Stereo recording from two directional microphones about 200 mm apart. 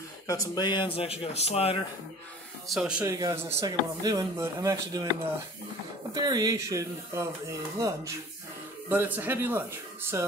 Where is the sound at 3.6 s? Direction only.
20° right (ahead or behind).